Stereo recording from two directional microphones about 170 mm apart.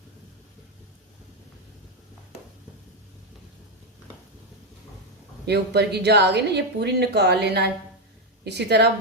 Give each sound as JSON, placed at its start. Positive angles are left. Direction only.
{"t": 5.5, "sound": "a woman's voice", "side_deg": -75}